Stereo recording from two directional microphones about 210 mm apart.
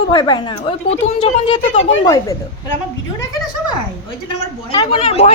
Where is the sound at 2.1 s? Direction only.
15° left (ahead or behind).